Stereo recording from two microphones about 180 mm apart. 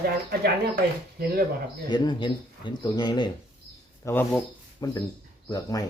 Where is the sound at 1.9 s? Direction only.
25° left (ahead or behind).